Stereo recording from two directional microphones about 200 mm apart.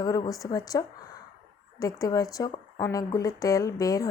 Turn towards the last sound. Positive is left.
turn(degrees=15)  # may be behind; listen again after turning